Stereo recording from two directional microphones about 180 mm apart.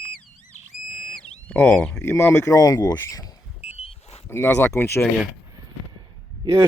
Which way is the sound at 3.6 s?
35° left (ahead or behind).